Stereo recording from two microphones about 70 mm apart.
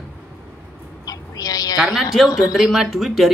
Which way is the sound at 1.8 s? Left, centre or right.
Centre.